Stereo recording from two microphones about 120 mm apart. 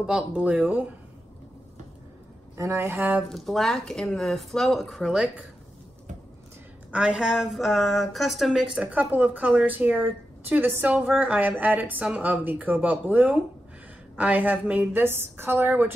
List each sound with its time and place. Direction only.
0.0 s speech: 10° right (ahead or behind)
2.5 s speech: 25° right (ahead or behind)
3.2 s speech: centre (ahead or behind)
6.9 s speech: 10° right (ahead or behind)